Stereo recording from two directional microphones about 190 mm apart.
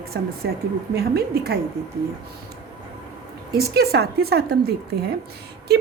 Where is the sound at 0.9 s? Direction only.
55° right (ahead or behind).